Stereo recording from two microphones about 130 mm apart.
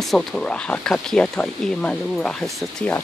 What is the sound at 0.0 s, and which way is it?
Speech, centre (ahead or behind).